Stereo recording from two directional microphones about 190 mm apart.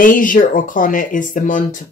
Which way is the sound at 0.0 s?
45° left (ahead or behind).